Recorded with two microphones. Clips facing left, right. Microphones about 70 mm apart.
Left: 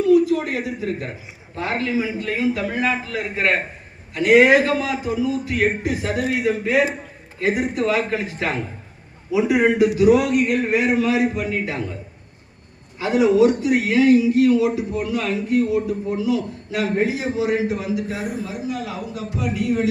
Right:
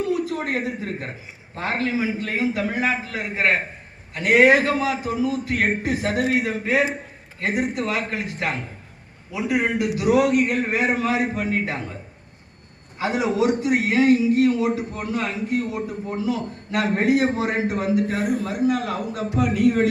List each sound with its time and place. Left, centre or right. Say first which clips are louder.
0.0 s a man's voice: left 8 dB; right
4.1 s a man's voice: left 2 dB; right
8.1 s a man's voice: left 3 dB; centre
10.2 s a man's voice: even; right
13.0 s a man's voice: left 6 dB; right
16.7 s a man's voice: right 2 dB; right